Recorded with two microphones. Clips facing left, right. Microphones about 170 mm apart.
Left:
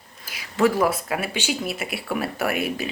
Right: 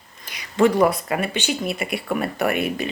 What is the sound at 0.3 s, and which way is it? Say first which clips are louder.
Speech: right 3 dB; 5° left (ahead or behind).